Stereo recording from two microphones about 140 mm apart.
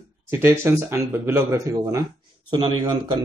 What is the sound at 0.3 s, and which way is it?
Speech, 15° right (ahead or behind).